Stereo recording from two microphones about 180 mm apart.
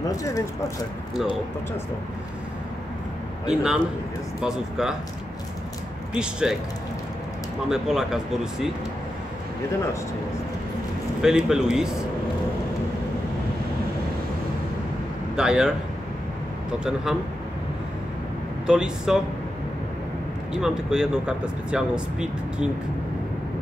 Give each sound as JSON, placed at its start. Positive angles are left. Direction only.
{"t": 0.0, "sound": "speech", "side_deg": 20}
{"t": 3.4, "sound": "speech", "side_deg": -5}
{"t": 6.1, "sound": "speech", "side_deg": -5}
{"t": 7.6, "sound": "speech", "side_deg": -5}
{"t": 11.2, "sound": "speech", "side_deg": -5}
{"t": 15.3, "sound": "speech", "side_deg": -5}
{"t": 16.8, "sound": "speech", "side_deg": -5}
{"t": 18.7, "sound": "speech", "side_deg": -5}
{"t": 20.6, "sound": "speech", "side_deg": -5}